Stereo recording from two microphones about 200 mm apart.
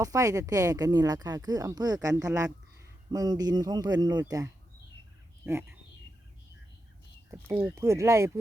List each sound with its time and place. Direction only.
0.0 s speech: 15° right (ahead or behind)
7.3 s speech: 10° right (ahead or behind)